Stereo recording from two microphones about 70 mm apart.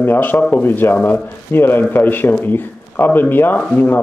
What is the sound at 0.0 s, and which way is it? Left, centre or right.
Speech, left.